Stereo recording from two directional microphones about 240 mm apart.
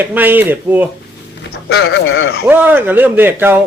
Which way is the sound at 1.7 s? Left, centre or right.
Left.